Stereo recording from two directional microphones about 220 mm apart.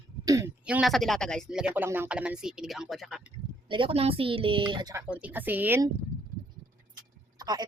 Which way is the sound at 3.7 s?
25° right (ahead or behind).